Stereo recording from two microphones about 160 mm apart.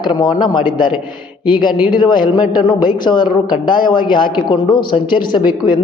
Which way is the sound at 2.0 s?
30° left (ahead or behind).